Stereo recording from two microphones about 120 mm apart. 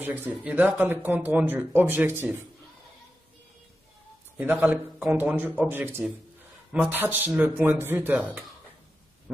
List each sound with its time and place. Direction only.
0.0 s speech: 15° right (ahead or behind)
4.4 s speech: 10° right (ahead or behind)